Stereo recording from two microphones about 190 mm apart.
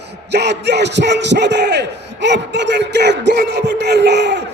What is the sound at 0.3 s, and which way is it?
Speech, 60° right (ahead or behind).